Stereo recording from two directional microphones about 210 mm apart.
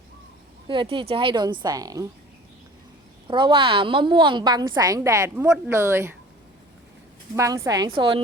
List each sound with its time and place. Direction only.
0.7 s a woman's voice: 25° right (ahead or behind)
3.2 s a woman's voice: 25° right (ahead or behind)
7.3 s a woman's voice: 15° right (ahead or behind)